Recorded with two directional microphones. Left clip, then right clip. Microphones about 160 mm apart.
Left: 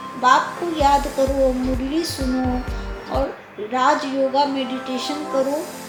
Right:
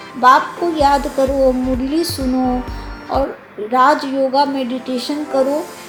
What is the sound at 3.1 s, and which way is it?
Speech, 50° right (ahead or behind).